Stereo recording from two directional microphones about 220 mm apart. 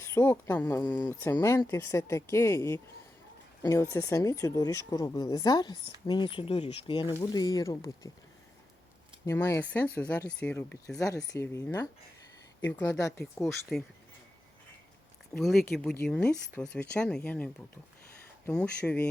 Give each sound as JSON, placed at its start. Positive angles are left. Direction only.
{"t": 0.0, "sound": "speech", "side_deg": 10}
{"t": 9.2, "sound": "speech", "side_deg": 10}
{"t": 13.4, "sound": "speech", "side_deg": 0}
{"t": 15.3, "sound": "speech", "side_deg": 0}